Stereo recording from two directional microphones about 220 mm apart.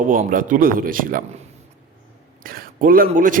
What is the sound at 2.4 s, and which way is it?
Speech, 40° right (ahead or behind).